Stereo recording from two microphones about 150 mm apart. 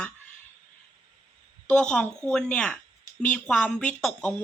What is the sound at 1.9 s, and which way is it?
A woman's voice, 5° left (ahead or behind).